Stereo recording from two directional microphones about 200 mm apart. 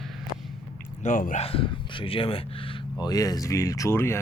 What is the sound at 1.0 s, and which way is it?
Speech, 40° left (ahead or behind).